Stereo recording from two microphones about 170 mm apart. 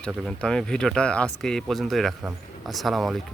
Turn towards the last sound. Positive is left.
turn(degrees=0)  # may be behind; listen again after turning